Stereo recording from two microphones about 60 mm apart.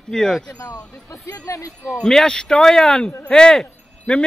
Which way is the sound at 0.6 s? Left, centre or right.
Left.